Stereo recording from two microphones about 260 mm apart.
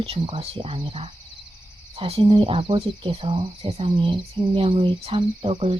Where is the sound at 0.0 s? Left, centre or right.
Right.